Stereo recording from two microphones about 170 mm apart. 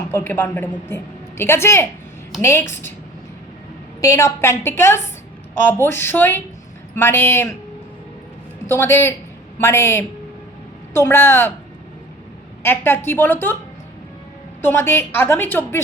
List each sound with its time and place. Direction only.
0.1 s a woman's voice: 15° left (ahead or behind)
4.0 s a woman's voice: 15° left (ahead or behind)
8.6 s a woman's voice: 15° left (ahead or behind)
12.6 s a woman's voice: 15° left (ahead or behind)
14.6 s a woman's voice: 15° left (ahead or behind)